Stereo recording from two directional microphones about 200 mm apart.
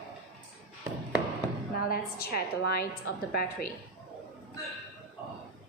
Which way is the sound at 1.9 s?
50° left (ahead or behind).